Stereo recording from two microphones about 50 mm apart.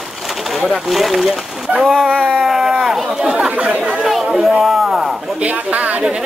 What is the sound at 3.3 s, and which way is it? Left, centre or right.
Speech, right.